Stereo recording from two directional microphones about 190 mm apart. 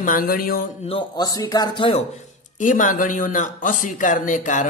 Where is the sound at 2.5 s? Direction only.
45° left (ahead or behind).